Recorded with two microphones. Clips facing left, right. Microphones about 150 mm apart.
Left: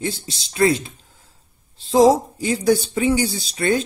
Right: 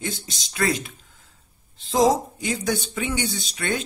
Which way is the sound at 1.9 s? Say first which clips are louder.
Left 5 dB; 30° left (ahead or behind).